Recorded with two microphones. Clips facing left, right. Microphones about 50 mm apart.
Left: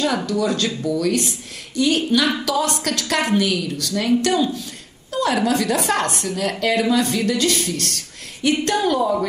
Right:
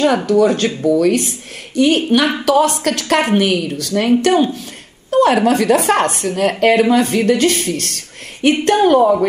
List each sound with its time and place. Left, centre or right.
0.3 s speech: right